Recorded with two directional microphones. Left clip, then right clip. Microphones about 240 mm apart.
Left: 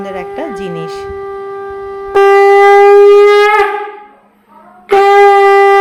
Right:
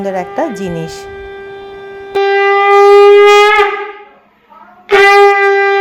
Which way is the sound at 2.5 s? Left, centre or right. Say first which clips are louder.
Right 2 dB; centre.